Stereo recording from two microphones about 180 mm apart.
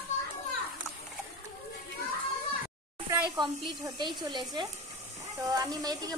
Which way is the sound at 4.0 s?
25° right (ahead or behind).